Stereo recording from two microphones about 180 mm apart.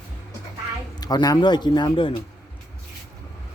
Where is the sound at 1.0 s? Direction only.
20° left (ahead or behind).